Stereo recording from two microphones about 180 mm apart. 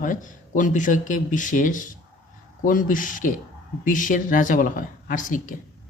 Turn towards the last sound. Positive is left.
turn(degrees=50)  # may be behind; listen again after turning